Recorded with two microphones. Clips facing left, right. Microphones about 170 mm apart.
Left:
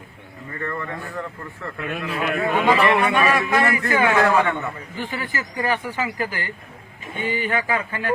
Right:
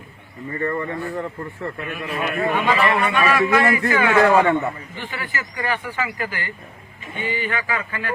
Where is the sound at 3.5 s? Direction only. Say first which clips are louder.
Right 2 dB; 10° right (ahead or behind).